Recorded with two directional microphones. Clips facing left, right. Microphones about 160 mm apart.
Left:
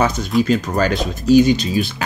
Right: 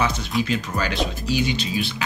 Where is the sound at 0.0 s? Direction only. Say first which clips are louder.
Left 6 dB; 45° left (ahead or behind).